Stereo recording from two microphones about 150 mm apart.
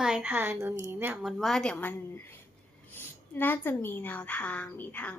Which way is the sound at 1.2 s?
Centre (ahead or behind).